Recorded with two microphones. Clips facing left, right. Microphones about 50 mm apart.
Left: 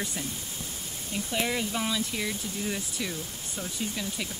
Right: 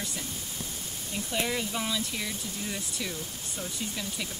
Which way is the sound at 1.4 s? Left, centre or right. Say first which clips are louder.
Left 2 dB; centre.